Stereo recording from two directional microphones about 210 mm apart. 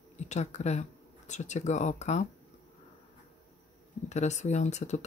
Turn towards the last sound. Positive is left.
turn(degrees=35)  # may be behind; listen again after turning